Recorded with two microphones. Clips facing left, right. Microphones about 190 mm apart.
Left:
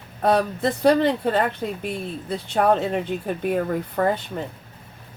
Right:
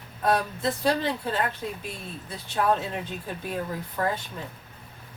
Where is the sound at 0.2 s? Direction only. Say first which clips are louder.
Left 5 dB; 65° left (ahead or behind).